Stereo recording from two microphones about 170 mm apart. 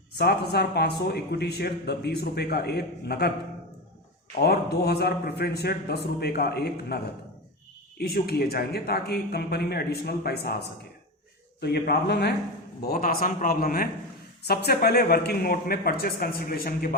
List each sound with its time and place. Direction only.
0.2 s speech: 70° left (ahead or behind)
4.4 s speech: 70° left (ahead or behind)
11.6 s speech: 70° left (ahead or behind)
12.8 s speech: 60° left (ahead or behind)